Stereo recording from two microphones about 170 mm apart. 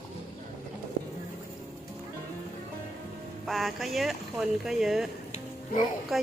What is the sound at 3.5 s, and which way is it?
Speech, centre (ahead or behind).